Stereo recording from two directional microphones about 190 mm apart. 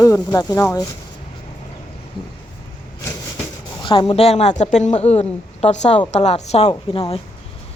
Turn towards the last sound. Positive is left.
turn(degrees=25)  # may be behind; listen again after turning